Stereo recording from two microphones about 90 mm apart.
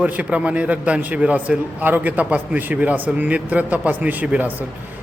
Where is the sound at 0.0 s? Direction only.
15° right (ahead or behind).